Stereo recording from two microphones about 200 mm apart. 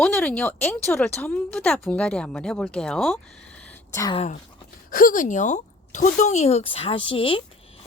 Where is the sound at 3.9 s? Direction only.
15° left (ahead or behind).